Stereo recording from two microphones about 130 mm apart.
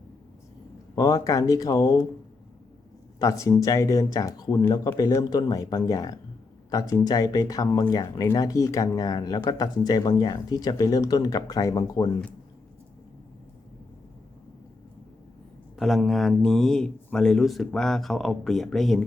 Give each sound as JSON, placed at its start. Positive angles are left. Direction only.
{"t": 0.9, "sound": "speech", "side_deg": 30}
{"t": 3.2, "sound": "speech", "side_deg": 25}
{"t": 15.7, "sound": "speech", "side_deg": 0}